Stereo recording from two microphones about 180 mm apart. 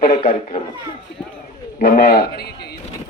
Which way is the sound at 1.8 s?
55° left (ahead or behind).